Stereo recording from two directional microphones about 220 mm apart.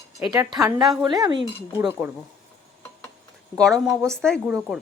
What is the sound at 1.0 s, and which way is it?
Speech, 20° right (ahead or behind).